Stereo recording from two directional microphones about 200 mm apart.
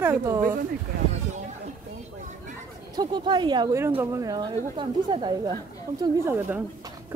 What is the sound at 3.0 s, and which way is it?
A woman's voice, 20° right (ahead or behind).